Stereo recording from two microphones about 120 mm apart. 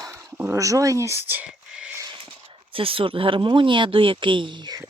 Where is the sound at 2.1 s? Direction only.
50° right (ahead or behind).